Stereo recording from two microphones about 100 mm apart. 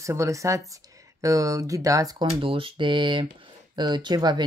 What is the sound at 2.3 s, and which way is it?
Speech, 65° right (ahead or behind).